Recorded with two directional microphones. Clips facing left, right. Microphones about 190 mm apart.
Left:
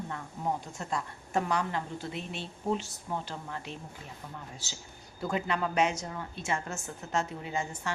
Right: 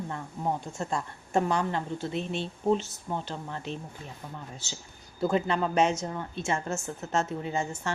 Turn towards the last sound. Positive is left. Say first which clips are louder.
# right 4 dB
turn(degrees=-25)  # may be behind; listen again after turning